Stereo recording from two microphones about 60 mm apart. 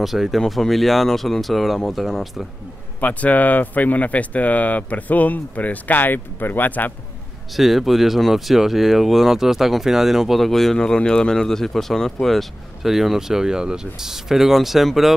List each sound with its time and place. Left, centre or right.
0.0 s speech: centre
3.0 s speech: left
7.5 s speech: centre